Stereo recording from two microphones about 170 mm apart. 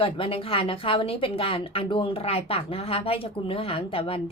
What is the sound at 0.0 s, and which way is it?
A woman's voice, 30° left (ahead or behind).